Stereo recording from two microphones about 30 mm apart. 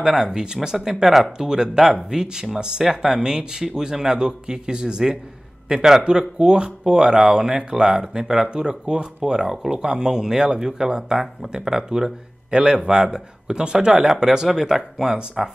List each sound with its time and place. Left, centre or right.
0.0 s speech: centre
1.0 s speech: centre
1.4 s speech: centre
3.1 s speech: right
7.5 s speech: right
12.4 s speech: right